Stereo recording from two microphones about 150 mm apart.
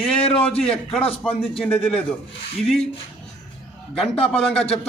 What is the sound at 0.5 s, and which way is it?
A man's voice, 5° left (ahead or behind).